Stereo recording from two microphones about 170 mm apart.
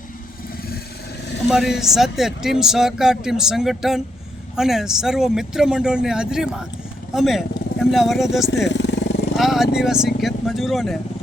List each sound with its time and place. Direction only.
1.5 s speech: 5° right (ahead or behind)
8.7 s vehicle: 90° left
9.3 s speech: centre (ahead or behind)